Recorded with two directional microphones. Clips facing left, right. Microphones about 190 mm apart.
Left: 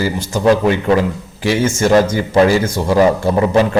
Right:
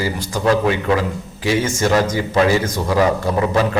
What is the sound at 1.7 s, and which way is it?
A man's voice, 25° left (ahead or behind).